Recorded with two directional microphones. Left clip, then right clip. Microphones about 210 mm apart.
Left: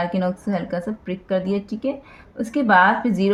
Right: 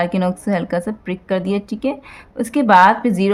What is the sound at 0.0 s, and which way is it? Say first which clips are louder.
A woman's voice: right 4 dB; 30° right (ahead or behind).